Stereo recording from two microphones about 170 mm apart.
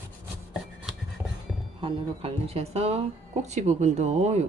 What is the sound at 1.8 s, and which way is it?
Speech, 35° right (ahead or behind).